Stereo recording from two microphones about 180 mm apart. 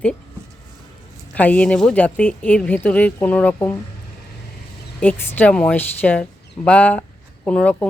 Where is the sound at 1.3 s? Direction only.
10° left (ahead or behind).